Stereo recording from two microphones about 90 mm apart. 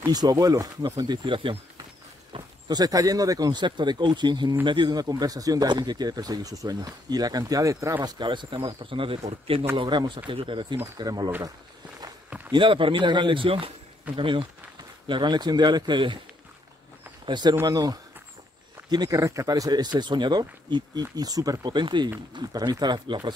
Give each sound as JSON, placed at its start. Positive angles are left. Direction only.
{"t": 0.0, "sound": "speech", "side_deg": -45}
{"t": 2.3, "sound": "a sound", "side_deg": -80}
{"t": 2.7, "sound": "speech", "side_deg": -45}
{"t": 8.0, "sound": "speech", "side_deg": -55}
{"t": 9.8, "sound": "speech", "side_deg": -60}
{"t": 11.0, "sound": "speech", "side_deg": -45}
{"t": 12.4, "sound": "speech", "side_deg": -65}
{"t": 14.1, "sound": "speech", "side_deg": -65}
{"t": 17.3, "sound": "speech", "side_deg": -55}
{"t": 21.7, "sound": "speech", "side_deg": -55}